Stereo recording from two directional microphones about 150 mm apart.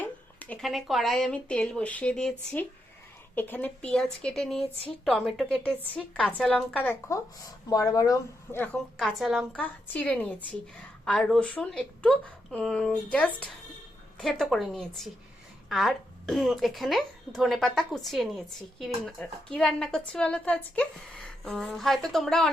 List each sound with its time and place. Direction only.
0.0 s a sound: 10° left (ahead or behind)
0.6 s a woman's voice: centre (ahead or behind)
7.3 s speech: 25° left (ahead or behind)
9.0 s a woman's voice: centre (ahead or behind)
9.6 s a woman's voice: 10° left (ahead or behind)